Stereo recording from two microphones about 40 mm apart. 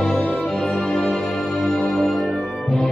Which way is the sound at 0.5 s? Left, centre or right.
Centre.